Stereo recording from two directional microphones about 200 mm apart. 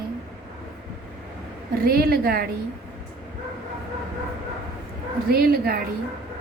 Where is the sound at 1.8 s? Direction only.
50° right (ahead or behind).